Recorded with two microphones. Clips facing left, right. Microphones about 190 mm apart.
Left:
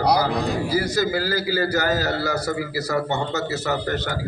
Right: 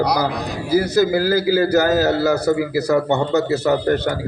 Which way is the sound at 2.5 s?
65° right (ahead or behind).